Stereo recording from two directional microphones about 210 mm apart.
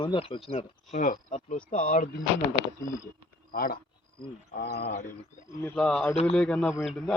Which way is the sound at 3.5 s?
45° left (ahead or behind).